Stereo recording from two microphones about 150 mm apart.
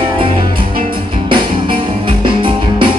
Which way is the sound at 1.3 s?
35° right (ahead or behind).